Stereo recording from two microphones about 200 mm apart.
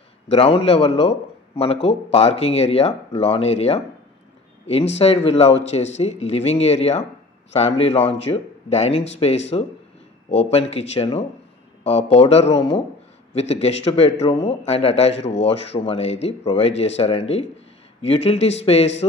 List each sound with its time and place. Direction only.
0.3 s a man's voice: 30° left (ahead or behind)
4.9 s a man's voice: 30° left (ahead or behind)